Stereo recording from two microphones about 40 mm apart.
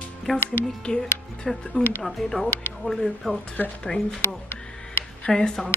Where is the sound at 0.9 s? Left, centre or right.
Centre.